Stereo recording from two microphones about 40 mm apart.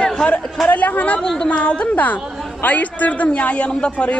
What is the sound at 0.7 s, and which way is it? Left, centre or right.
A woman's voice, left.